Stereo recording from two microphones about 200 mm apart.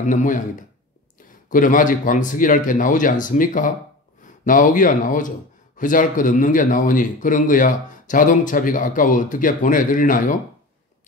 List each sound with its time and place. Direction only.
0.0 s a man's voice: 40° left (ahead or behind)